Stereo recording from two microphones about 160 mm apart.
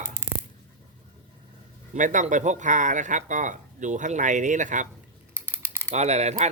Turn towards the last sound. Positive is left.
turn(degrees=-45)  # may be behind; listen again after turning